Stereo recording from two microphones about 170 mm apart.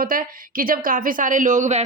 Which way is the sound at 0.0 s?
55° right (ahead or behind).